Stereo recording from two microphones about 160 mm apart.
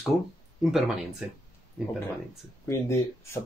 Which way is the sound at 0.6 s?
Centre (ahead or behind).